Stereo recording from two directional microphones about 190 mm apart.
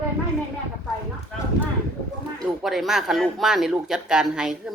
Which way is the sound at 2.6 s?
Centre (ahead or behind).